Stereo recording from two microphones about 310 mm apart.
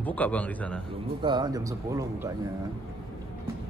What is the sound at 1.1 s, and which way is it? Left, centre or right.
Speech, centre.